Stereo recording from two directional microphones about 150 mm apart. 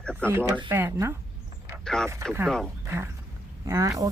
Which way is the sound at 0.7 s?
15° right (ahead or behind).